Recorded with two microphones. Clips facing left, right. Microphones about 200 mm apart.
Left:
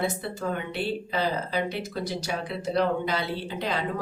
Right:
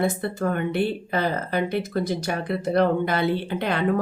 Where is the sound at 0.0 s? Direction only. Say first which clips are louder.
Right 5 dB; 55° right (ahead or behind).